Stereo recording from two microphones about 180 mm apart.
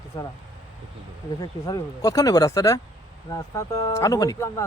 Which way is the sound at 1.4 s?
20° left (ahead or behind).